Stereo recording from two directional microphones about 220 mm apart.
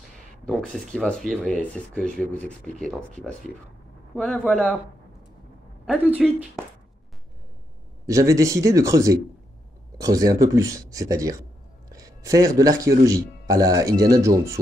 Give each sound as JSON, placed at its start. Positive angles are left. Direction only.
{"t": 0.5, "sound": "speech", "side_deg": 5}
{"t": 5.9, "sound": "speech", "side_deg": -5}
{"t": 8.1, "sound": "speech", "side_deg": -15}